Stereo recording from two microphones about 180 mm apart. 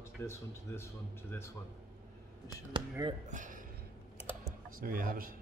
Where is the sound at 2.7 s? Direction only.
25° right (ahead or behind).